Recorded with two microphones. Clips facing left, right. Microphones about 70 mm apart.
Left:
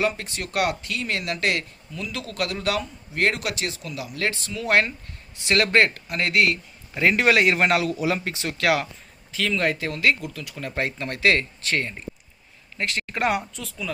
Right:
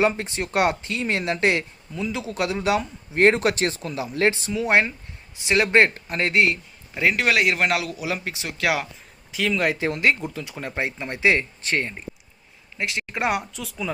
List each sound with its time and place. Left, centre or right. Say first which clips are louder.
0.0 s speech: right 4 dB; right
6.9 s speech: left 2 dB; centre
9.7 s speech: right 1 dB; right
12.7 s speech: even; centre